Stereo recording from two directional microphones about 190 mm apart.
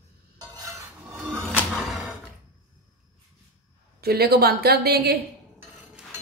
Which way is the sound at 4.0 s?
55° right (ahead or behind).